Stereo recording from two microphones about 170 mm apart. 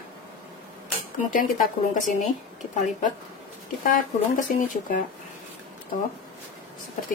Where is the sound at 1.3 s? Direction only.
50° left (ahead or behind).